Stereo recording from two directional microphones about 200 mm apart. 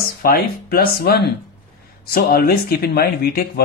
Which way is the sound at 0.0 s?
50° left (ahead or behind).